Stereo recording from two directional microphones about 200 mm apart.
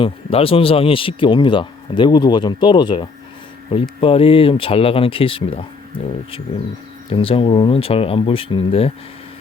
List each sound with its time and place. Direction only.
0.0 s speech: 30° left (ahead or behind)
7.1 s speech: 30° left (ahead or behind)